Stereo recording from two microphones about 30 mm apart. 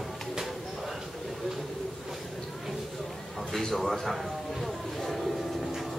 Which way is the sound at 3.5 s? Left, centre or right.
Centre.